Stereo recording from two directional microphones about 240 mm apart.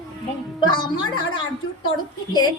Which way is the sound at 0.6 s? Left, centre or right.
Centre.